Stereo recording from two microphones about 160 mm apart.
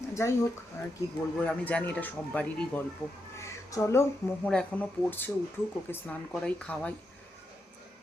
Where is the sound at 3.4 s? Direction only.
15° left (ahead or behind).